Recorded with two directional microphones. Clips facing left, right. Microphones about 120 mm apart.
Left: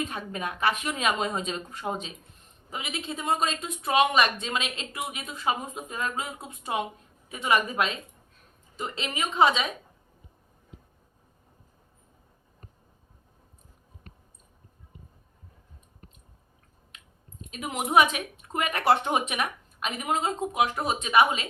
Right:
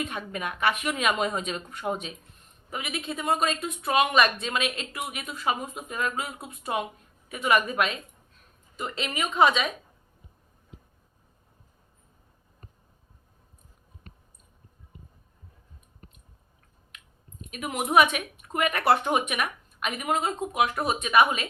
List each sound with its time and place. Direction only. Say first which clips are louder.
0.0 s speech: even; 30° left (ahead or behind)
16.9 s chewing: right 1 dB; 30° left (ahead or behind)
17.5 s speech: even; 25° left (ahead or behind)